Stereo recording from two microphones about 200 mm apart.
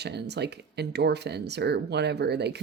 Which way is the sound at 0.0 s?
55° right (ahead or behind).